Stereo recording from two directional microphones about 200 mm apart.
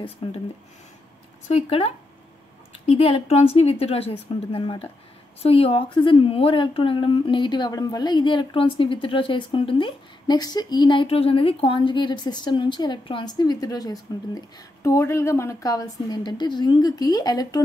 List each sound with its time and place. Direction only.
0.0 s a woman's voice: 25° left (ahead or behind)
1.5 s a woman's voice: 30° left (ahead or behind)